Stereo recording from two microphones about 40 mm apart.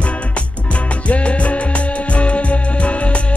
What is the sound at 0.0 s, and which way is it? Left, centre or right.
Music, left.